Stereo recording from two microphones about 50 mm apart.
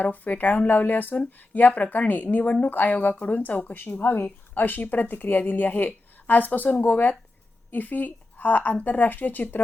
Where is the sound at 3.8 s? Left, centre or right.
Left.